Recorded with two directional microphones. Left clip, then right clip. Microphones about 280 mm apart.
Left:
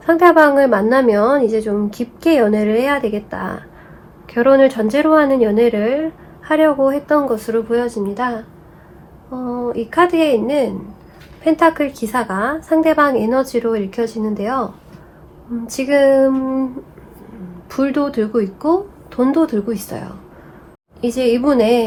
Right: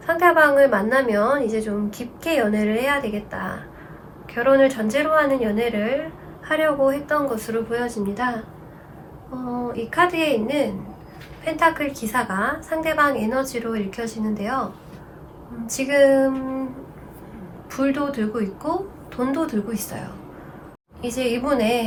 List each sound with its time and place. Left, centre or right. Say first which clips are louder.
0.0 s a woman's voice: left 6 dB; centre
7.3 s speech: left 7 dB; centre
9.9 s a woman's voice: left 6 dB; centre
15.6 s a woman's voice: left 3 dB; centre
17.7 s a woman's voice: left 5 dB; centre
21.1 s a woman's voice: left 7 dB; centre